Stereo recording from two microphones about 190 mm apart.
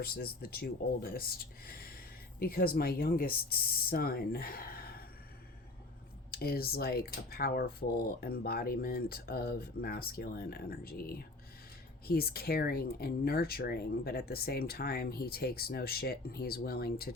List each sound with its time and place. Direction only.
0.0 s speech: 55° left (ahead or behind)
6.3 s speech: 55° left (ahead or behind)